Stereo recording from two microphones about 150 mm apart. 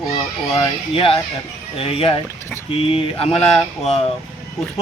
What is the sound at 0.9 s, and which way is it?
A man's voice, 40° left (ahead or behind).